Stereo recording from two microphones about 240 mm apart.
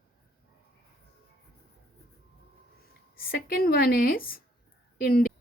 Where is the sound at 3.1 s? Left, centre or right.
Left.